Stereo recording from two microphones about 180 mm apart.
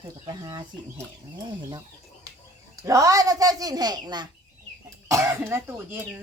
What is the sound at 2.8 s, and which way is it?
Speech, 20° right (ahead or behind).